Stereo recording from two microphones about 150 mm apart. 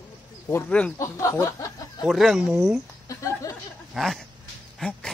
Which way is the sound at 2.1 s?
Centre (ahead or behind).